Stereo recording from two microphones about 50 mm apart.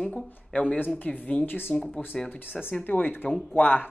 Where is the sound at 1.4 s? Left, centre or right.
Left.